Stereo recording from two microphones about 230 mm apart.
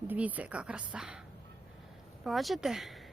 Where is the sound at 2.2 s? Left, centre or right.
Centre.